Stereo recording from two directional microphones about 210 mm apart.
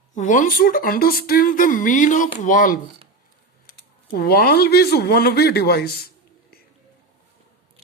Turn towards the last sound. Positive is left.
turn(degrees=50)  # may be behind; listen again after turning